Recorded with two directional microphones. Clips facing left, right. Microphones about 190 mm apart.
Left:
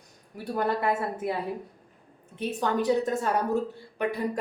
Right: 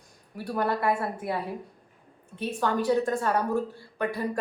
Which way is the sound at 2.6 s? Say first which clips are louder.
Even; 20° left (ahead or behind).